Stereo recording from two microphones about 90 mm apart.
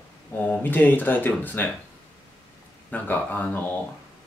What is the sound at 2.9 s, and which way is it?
Speech, 20° left (ahead or behind).